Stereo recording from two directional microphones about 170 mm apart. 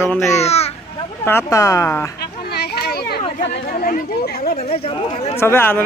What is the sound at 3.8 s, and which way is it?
Speech, 65° left (ahead or behind).